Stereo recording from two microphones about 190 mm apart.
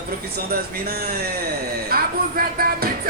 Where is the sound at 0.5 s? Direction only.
55° right (ahead or behind).